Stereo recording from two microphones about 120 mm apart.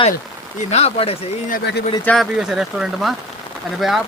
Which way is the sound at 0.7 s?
60° left (ahead or behind).